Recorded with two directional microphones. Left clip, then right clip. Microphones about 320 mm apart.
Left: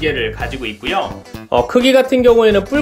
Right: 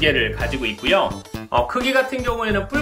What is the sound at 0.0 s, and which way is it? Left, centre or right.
Speech, centre.